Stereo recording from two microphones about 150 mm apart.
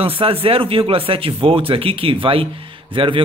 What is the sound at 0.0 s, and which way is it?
Speech, 40° right (ahead or behind).